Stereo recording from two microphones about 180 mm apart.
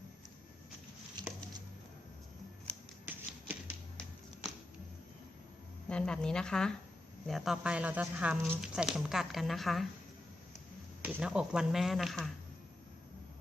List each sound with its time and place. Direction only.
1.2 s patter: 25° right (ahead or behind)
2.7 s shuffling cards: 5° left (ahead or behind)
3.1 s a sound: 10° right (ahead or behind)
5.9 s speech: 5° left (ahead or behind)
11.0 s speech: 5° right (ahead or behind)